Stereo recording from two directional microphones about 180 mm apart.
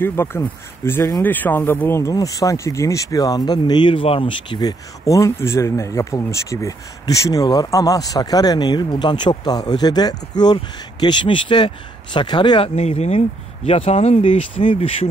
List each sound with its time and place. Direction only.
0.0 s speech: 15° left (ahead or behind); by 15.0 s 30° left (ahead or behind)